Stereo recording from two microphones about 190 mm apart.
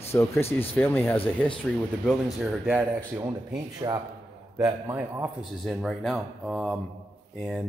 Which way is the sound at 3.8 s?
20° right (ahead or behind).